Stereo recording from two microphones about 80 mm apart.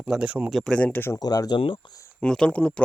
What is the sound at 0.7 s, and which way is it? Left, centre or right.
Speech, centre.